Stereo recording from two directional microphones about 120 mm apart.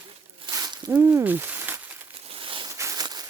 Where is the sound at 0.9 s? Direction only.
20° right (ahead or behind).